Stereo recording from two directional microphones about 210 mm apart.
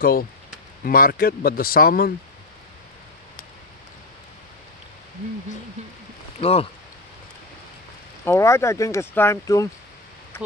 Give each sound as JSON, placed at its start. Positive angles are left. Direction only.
{"t": 0.0, "sound": "speech", "side_deg": 45}
{"t": 6.4, "sound": "speech", "side_deg": 30}
{"t": 8.3, "sound": "speech", "side_deg": 15}